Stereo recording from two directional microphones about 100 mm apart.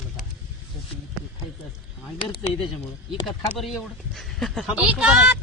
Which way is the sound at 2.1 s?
55° left (ahead or behind).